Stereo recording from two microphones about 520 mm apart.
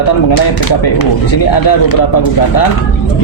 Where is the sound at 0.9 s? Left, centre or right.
Left.